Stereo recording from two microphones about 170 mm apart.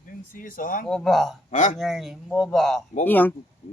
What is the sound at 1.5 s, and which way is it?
Speech, 45° left (ahead or behind).